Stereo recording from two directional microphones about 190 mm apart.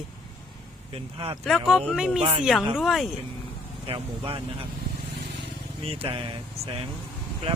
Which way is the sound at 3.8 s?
30° right (ahead or behind).